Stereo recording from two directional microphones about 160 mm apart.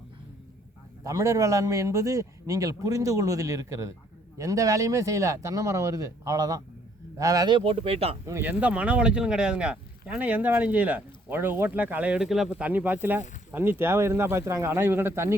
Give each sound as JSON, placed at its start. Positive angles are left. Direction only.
{"t": 1.0, "sound": "a man's voice", "side_deg": -20}
{"t": 8.3, "sound": "speech", "side_deg": -10}